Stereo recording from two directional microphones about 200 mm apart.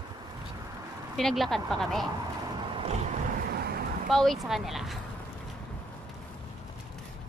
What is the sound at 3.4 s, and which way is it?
Vehicle, 50° right (ahead or behind).